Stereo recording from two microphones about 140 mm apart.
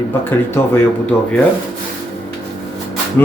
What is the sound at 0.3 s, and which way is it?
Speech, 15° left (ahead or behind).